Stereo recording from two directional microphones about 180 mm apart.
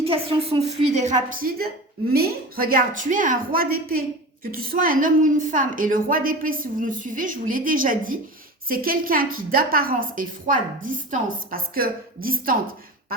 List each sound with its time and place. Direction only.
0.0 s a woman's voice: 30° right (ahead or behind); by 12.5 s 55° right (ahead or behind)